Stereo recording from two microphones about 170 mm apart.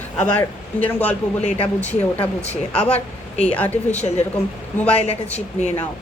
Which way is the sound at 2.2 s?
35° left (ahead or behind).